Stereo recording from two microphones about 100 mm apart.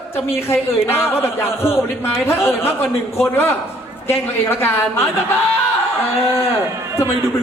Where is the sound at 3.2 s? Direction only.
25° left (ahead or behind).